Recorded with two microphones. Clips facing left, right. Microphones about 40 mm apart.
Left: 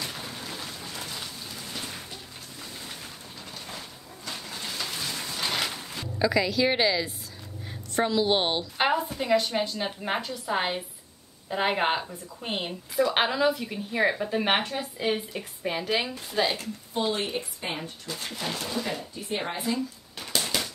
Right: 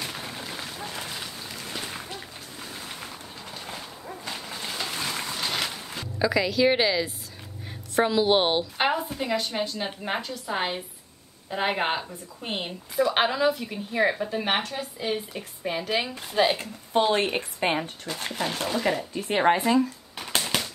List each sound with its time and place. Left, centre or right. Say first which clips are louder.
0.0 s a sound: right 1 dB; centre
3.5 s a sound: right 3 dB; centre
5.4 s boat: left 1 dB; centre
5.7 s a woman's voice: even; centre
8.8 s a woman's voice: left 3 dB; centre
16.3 s a woman's voice: right 5 dB; centre
16.9 s a woman's voice: right 6 dB; right
18.0 s speech: right 4 dB; right
19.1 s a woman's voice: right 10 dB; right